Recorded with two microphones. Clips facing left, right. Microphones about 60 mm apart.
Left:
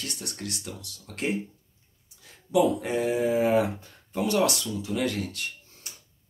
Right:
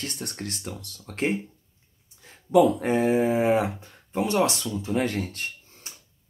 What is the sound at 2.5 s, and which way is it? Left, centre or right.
Speech, right.